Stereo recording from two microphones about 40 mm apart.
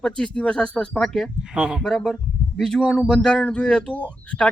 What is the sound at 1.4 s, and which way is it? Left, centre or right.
Speech, right.